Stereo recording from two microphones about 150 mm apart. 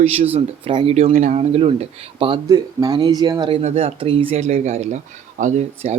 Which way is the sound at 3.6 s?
45° right (ahead or behind).